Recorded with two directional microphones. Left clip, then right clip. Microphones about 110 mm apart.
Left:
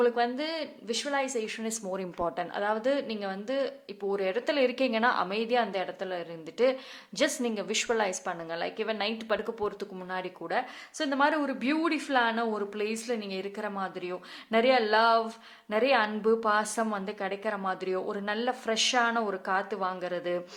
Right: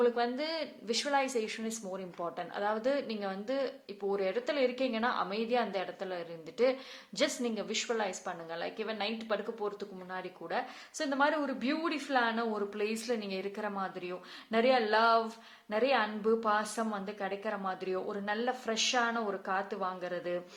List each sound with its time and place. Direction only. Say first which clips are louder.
0.0 s speech: left 3 dB; 20° left (ahead or behind)
1.6 s a woman's voice: left 5 dB; 35° left (ahead or behind)